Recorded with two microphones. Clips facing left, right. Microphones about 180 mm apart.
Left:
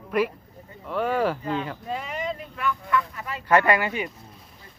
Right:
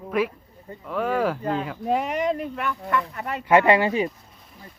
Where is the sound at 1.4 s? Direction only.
40° right (ahead or behind).